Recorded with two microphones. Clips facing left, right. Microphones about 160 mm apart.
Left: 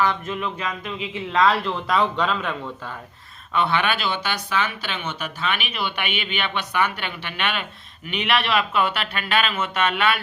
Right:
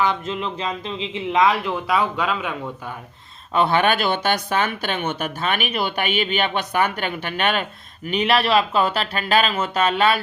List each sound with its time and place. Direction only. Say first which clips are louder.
0.0 s speech: right 1 dB; 20° right (ahead or behind)
3.5 s speech: right 4 dB; 40° right (ahead or behind)